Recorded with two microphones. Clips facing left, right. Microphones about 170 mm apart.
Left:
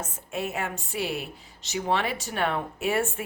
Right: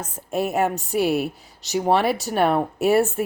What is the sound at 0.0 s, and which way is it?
Speech, 40° right (ahead or behind).